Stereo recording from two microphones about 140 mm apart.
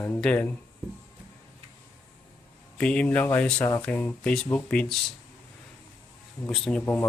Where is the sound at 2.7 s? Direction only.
10° left (ahead or behind).